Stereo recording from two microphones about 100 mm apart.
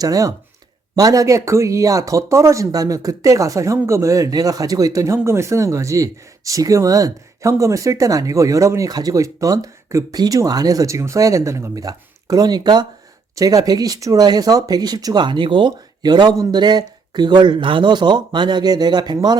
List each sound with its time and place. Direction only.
0.0 s speech: 35° right (ahead or behind)